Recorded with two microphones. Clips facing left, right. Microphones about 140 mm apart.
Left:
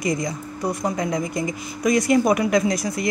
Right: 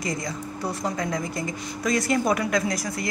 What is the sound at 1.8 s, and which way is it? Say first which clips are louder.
Speech: left 6 dB; 15° left (ahead or behind).